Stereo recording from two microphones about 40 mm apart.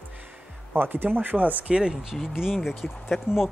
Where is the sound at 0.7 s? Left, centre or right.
Right.